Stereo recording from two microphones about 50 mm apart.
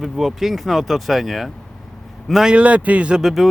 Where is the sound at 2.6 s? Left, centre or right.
Right.